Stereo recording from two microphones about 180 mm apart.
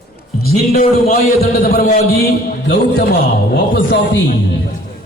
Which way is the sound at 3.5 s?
80° left.